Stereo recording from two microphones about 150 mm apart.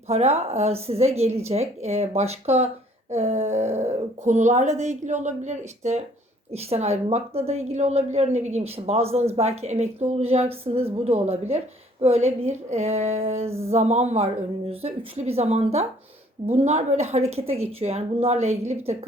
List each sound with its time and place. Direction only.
0.1 s a woman's voice: 45° right (ahead or behind)